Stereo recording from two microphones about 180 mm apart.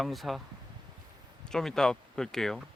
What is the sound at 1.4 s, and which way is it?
Speech, 5° left (ahead or behind).